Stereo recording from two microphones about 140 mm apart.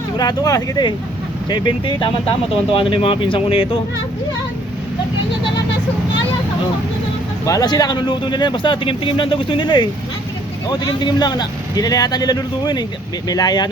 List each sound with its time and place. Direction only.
0.2 s speech: 25° left (ahead or behind)
7.4 s speech: 25° left (ahead or behind)